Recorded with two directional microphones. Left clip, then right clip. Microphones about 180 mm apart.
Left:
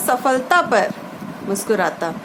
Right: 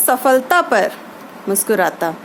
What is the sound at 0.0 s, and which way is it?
A woman's voice, 35° right (ahead or behind).